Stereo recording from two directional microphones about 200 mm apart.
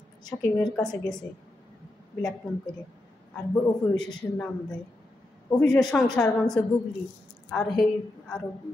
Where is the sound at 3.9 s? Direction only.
5° left (ahead or behind).